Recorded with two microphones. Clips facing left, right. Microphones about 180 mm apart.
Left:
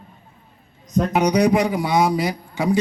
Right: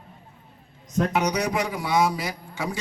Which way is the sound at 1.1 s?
15° left (ahead or behind).